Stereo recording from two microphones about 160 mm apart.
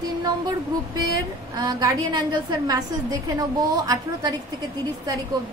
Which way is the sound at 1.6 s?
25° right (ahead or behind).